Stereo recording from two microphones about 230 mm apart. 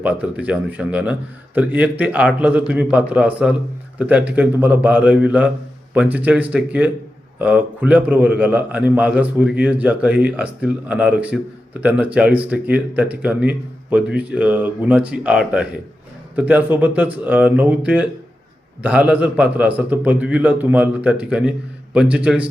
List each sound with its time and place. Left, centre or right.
0.0 s a man's voice: centre